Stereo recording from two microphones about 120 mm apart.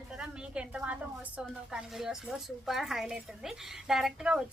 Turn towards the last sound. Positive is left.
turn(degrees=-5)  # may be behind; listen again after turning